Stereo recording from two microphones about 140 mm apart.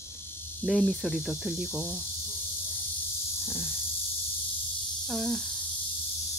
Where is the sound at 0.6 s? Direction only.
10° left (ahead or behind).